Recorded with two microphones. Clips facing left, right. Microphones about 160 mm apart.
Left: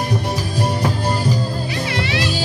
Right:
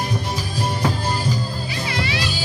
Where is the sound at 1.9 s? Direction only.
60° left (ahead or behind).